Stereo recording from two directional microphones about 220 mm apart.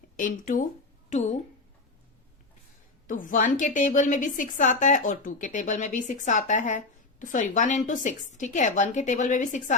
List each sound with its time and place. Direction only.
0.2 s a woman's voice: 40° left (ahead or behind)
3.1 s a woman's voice: 35° left (ahead or behind)